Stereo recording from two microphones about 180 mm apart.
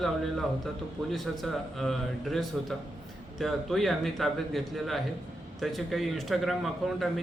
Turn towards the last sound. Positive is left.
turn(degrees=0)  # may be behind; listen again after turning